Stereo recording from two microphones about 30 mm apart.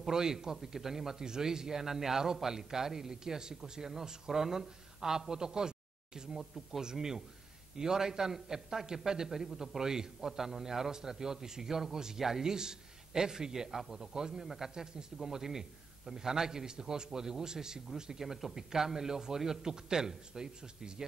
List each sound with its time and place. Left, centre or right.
0.1 s a man's voice: centre
6.3 s a man's voice: centre
6.8 s a man's voice: right
14.3 s a man's voice: centre; by 20.9 s right